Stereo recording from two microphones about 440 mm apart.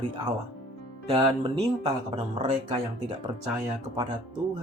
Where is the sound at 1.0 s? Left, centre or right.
Centre.